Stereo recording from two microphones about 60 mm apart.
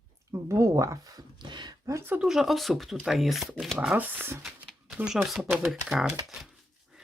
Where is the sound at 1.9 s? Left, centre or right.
Right.